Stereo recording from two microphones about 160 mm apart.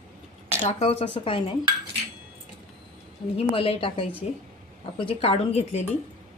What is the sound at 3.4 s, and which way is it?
Speech, 35° left (ahead or behind).